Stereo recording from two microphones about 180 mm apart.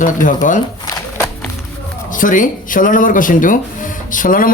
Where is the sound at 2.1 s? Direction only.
50° left (ahead or behind).